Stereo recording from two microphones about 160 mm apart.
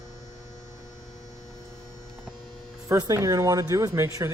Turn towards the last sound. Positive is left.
turn(degrees=-15)  # may be behind; listen again after turning